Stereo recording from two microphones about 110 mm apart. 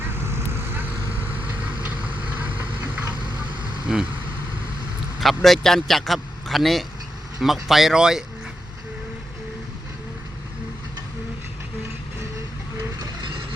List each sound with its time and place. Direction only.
0.1 s vehicle: 20° right (ahead or behind)
3.9 s speech: 5° right (ahead or behind)
5.2 s speech: centre (ahead or behind)